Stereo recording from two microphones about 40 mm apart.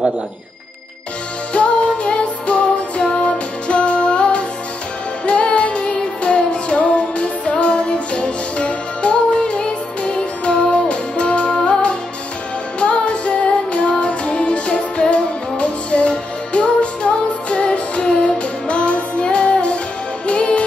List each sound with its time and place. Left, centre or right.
1.5 s music: left